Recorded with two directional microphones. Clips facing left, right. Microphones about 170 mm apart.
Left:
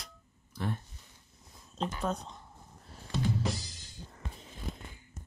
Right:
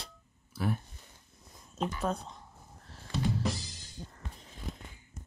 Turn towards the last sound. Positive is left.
turn(degrees=0)  # may be behind; listen again after turning